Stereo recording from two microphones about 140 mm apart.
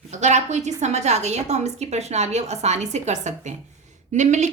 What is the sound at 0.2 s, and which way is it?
A woman's voice, 55° right (ahead or behind).